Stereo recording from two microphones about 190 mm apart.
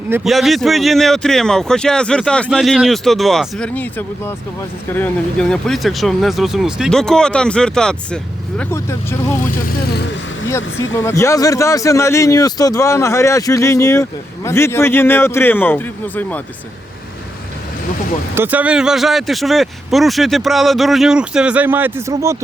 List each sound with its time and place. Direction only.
0.3 s speech: centre (ahead or behind)
9.6 s speech: 50° left (ahead or behind)
10.9 s speech: 15° left (ahead or behind)
18.3 s speech: 10° right (ahead or behind)